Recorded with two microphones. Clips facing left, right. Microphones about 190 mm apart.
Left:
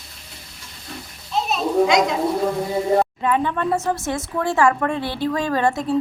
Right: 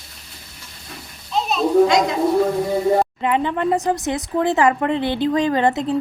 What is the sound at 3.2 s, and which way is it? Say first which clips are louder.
Speech: right 1 dB; 20° right (ahead or behind).